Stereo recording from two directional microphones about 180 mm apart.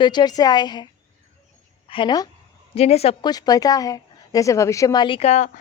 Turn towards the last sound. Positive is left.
turn(degrees=35)  # may be behind; listen again after turning